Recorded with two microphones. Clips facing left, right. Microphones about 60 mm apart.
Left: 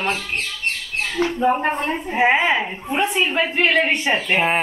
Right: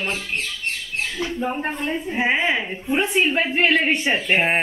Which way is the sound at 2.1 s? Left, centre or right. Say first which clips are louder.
Left 4 dB; left.